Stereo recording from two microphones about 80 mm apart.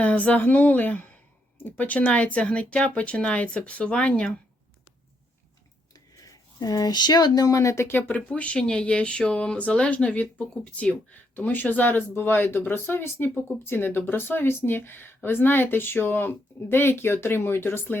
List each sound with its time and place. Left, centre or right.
0.0 s a woman's voice: centre
6.1 s speech: left
8.0 s speech: centre